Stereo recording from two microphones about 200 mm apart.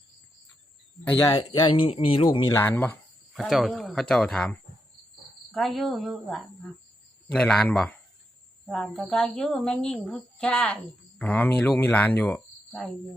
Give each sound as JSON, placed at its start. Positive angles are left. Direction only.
{"t": 1.2, "sound": "a woman's voice", "side_deg": 20}